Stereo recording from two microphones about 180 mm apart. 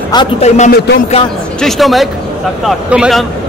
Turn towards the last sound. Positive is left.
turn(degrees=0)  # may be behind; listen again after turning